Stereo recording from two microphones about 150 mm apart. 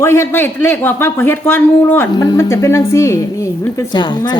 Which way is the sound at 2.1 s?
30° left (ahead or behind).